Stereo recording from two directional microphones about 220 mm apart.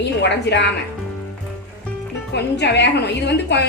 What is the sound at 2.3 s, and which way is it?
A woman's voice, 50° left (ahead or behind).